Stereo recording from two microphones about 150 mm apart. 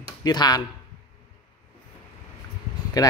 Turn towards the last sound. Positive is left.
turn(degrees=25)  # may be behind; listen again after turning